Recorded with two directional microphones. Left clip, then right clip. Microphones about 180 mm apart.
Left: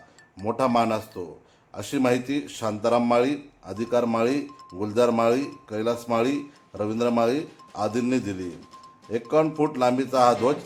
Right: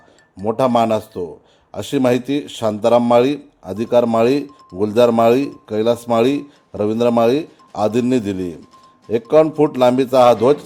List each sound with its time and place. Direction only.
0.4 s a man's voice: 40° right (ahead or behind)